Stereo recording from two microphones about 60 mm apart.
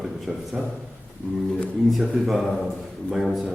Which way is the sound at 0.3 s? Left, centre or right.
Centre.